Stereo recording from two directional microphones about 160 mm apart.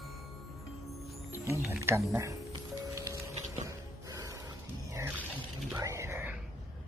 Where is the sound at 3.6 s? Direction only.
20° right (ahead or behind).